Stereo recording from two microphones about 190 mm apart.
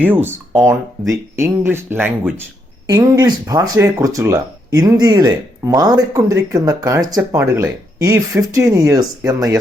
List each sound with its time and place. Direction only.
0.0 s speech: 10° right (ahead or behind)